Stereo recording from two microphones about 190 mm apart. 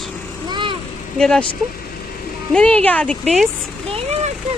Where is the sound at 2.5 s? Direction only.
5° left (ahead or behind).